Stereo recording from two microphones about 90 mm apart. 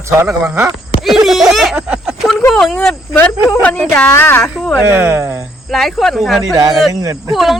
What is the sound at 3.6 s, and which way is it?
Speech, 15° left (ahead or behind).